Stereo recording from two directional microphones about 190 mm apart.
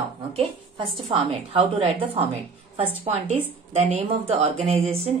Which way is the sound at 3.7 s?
35° right (ahead or behind).